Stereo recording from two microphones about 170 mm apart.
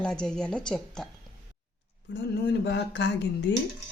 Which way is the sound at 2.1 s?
90° left.